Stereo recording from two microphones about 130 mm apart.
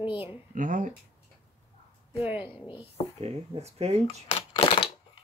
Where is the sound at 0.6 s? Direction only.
90° right.